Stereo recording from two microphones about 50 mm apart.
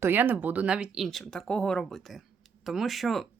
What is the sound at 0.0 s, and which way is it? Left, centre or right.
Speech, right.